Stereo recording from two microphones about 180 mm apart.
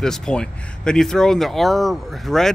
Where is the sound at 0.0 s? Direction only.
5° left (ahead or behind).